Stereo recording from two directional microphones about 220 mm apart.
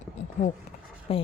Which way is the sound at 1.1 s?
25° left (ahead or behind).